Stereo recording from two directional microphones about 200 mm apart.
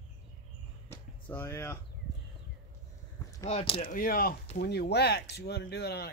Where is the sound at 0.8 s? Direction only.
10° left (ahead or behind).